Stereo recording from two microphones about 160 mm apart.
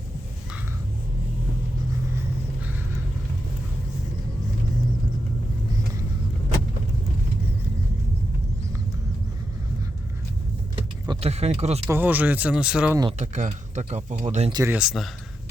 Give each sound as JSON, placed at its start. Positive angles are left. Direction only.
{"t": 11.2, "sound": "speech", "side_deg": -40}
{"t": 11.9, "sound": "speech", "side_deg": -10}
{"t": 13.1, "sound": "speech", "side_deg": -45}
{"t": 14.5, "sound": "speech", "side_deg": -20}
{"t": 14.8, "sound": "a man's voice", "side_deg": 0}